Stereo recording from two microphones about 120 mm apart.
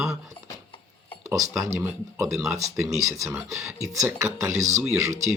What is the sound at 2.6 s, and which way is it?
Speech, 25° right (ahead or behind).